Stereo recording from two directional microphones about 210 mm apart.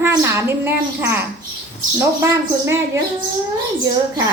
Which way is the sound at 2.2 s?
15° right (ahead or behind).